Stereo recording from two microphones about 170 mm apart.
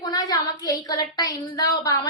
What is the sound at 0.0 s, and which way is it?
A woman's voice, 25° left (ahead or behind).